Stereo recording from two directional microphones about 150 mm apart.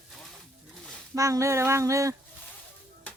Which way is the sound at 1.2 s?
20° right (ahead or behind).